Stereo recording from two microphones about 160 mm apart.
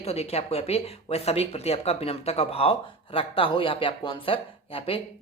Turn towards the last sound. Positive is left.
turn(degrees=35)  # may be behind; listen again after turning